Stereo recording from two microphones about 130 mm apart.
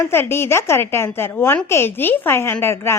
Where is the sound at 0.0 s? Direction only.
20° left (ahead or behind).